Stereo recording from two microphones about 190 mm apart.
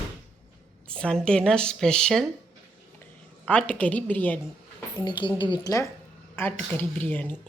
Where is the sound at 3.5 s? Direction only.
5° left (ahead or behind).